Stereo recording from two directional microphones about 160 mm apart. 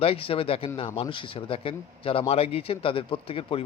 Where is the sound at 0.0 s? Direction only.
35° left (ahead or behind).